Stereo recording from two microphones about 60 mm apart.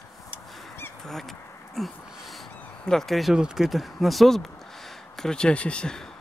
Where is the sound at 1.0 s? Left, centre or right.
Centre.